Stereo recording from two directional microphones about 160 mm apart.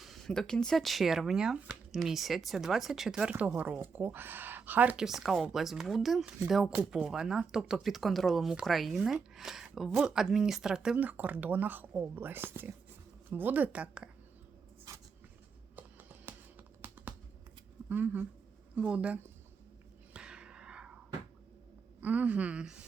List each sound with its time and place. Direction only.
0.0 s a woman's voice: centre (ahead or behind)
15.7 s a sound: 10° right (ahead or behind)
16.8 s computer keyboard: 15° right (ahead or behind)
17.8 s a woman's voice: 10° right (ahead or behind)
20.1 s a sound: 5° right (ahead or behind)
22.0 s a woman's voice: 10° right (ahead or behind)